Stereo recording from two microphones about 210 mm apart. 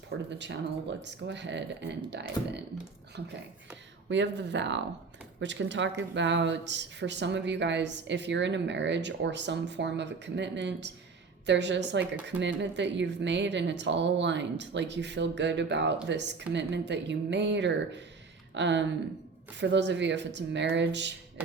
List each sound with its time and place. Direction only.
0.3 s speech: 55° right (ahead or behind)